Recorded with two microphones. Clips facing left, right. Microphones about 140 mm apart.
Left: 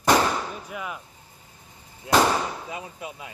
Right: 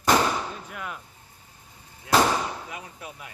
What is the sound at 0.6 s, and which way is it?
Speech, 5° left (ahead or behind).